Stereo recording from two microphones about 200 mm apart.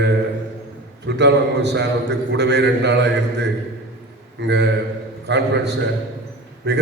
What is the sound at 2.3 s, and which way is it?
Speech, 60° right (ahead or behind).